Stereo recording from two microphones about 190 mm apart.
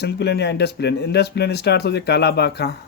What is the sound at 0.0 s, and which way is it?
Speech, 60° left (ahead or behind).